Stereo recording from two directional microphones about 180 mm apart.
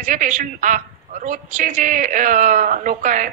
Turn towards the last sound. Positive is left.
turn(degrees=-45)  # may be behind; listen again after turning